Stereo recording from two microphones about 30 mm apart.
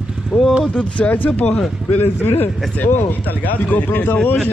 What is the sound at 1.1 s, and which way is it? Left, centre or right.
Speech, left.